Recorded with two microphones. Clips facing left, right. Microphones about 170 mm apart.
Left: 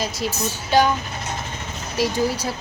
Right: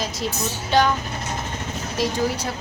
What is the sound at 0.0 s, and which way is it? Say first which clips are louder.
Speech: left 1 dB; centre (ahead or behind).